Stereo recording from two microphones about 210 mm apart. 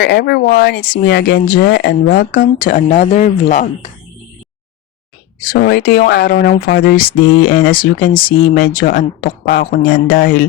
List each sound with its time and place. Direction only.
0.0 s speech: 50° left (ahead or behind)
5.4 s speech: 45° left (ahead or behind)